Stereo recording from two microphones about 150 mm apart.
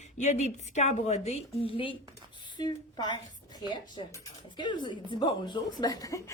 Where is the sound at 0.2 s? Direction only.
50° left (ahead or behind); by 3.2 s 30° left (ahead or behind).